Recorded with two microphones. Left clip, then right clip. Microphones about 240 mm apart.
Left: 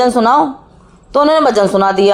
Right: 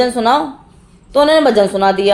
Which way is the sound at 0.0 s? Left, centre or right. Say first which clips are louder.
Left 3 dB; left.